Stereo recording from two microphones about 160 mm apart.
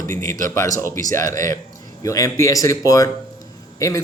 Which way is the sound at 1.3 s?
55° right (ahead or behind).